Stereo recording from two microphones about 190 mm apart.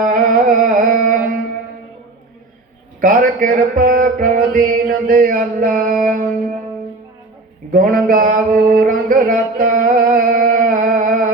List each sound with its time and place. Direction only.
0.0 s music: 45° right (ahead or behind)
3.0 s mantra: 45° right (ahead or behind)
7.7 s mantra: 45° right (ahead or behind)